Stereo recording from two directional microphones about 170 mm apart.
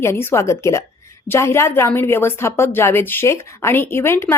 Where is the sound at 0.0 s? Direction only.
15° left (ahead or behind).